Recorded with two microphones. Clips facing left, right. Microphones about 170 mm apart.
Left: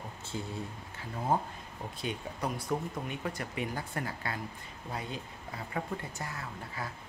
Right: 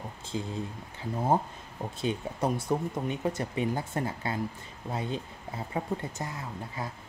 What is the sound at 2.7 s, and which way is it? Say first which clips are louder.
Speech: right 5 dB; 30° right (ahead or behind).